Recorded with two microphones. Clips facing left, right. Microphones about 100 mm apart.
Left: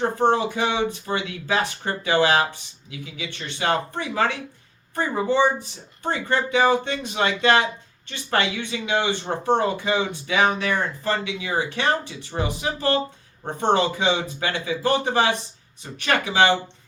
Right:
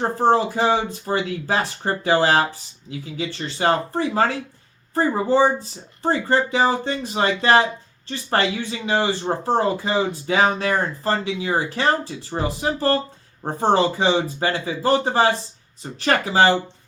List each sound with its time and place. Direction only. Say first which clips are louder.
0.0 s speech: right 2 dB; 35° right (ahead or behind)